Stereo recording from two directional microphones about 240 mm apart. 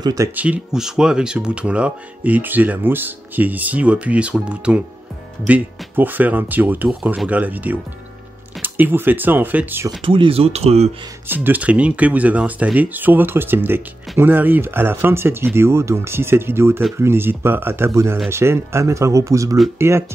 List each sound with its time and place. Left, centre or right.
0.0 s speech: centre
10.0 s speech: right
11.2 s speech: centre